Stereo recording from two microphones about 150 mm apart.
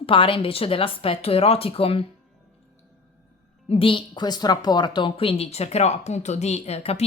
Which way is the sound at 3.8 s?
35° left (ahead or behind).